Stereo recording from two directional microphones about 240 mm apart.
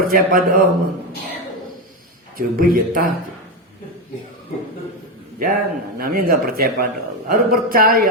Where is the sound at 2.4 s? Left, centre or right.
Right.